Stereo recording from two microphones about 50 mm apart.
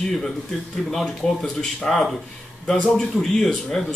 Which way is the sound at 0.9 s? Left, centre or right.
Centre.